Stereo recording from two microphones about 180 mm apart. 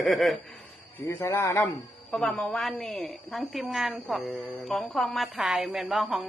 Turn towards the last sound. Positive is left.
turn(degrees=0)  # may be behind; listen again after turning